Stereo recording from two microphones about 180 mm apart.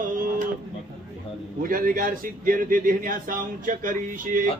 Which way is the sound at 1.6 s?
50° right (ahead or behind).